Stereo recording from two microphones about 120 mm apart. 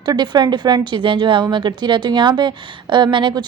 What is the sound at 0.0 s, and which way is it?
A woman's voice, 35° right (ahead or behind).